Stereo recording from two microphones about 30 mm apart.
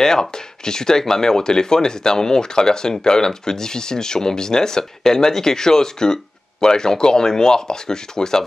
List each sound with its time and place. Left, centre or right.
0.0 s speech: left